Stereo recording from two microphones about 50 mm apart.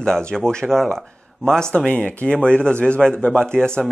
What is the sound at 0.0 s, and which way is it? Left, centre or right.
Speech, centre.